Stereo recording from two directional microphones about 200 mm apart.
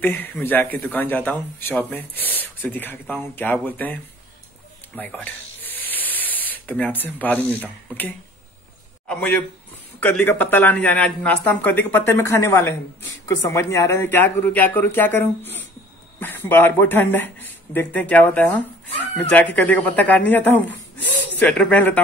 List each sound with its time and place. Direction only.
0.0 s speech: 10° left (ahead or behind)
4.9 s spray: 10° left (ahead or behind)
9.0 s a man's voice: 5° left (ahead or behind)